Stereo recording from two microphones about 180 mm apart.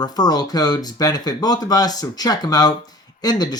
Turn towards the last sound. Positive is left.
turn(degrees=20)  # may be behind; listen again after turning